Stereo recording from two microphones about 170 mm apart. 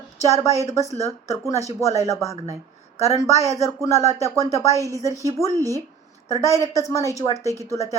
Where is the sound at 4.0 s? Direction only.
20° right (ahead or behind).